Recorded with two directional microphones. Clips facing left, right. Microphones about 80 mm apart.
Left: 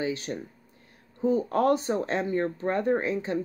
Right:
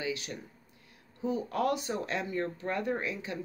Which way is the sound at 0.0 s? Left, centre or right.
Left.